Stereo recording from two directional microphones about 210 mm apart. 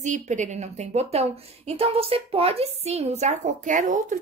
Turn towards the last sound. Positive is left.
turn(degrees=-35)  # may be behind; listen again after turning